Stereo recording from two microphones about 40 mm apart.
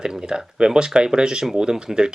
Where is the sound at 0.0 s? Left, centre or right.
Right.